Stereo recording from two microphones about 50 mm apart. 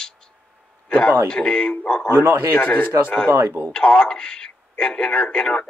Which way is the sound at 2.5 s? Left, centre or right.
Left.